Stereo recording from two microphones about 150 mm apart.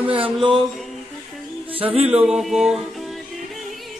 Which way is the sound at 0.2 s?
5° right (ahead or behind).